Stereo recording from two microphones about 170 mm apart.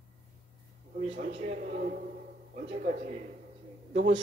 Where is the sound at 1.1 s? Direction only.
45° right (ahead or behind).